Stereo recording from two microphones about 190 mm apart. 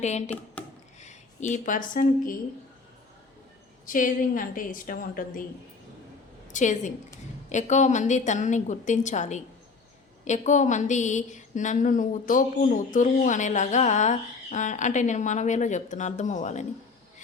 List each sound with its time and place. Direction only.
0.0 s speech: 35° left (ahead or behind)
0.6 s a sound: 5° left (ahead or behind)
0.9 s speech: 40° left (ahead or behind)
3.8 s a woman's voice: 45° left (ahead or behind)
6.5 s a woman's voice: 40° left (ahead or behind)